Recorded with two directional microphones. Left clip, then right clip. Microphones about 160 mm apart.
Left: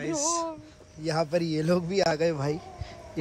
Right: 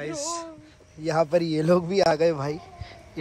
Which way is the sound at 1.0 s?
10° left (ahead or behind).